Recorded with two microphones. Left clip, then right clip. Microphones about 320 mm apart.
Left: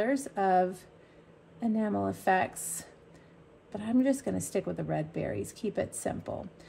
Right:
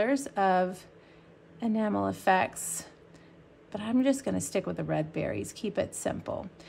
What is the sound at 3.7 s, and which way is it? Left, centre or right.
Speech, centre.